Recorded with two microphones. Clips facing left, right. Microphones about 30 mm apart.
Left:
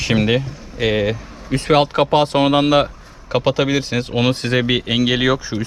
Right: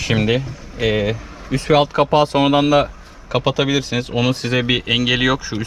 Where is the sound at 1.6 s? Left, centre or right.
Left.